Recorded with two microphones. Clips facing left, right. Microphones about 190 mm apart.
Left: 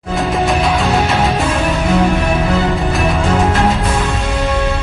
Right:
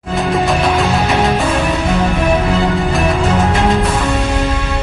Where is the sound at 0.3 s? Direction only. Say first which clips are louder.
Right 1 dB; centre (ahead or behind).